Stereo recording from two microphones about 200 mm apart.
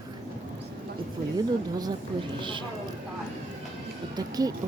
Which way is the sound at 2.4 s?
25° right (ahead or behind).